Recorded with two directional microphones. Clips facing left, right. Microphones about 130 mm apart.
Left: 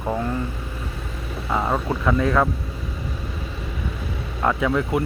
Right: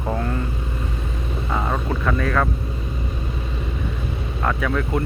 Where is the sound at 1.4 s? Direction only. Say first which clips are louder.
Left 2 dB; 5° left (ahead or behind).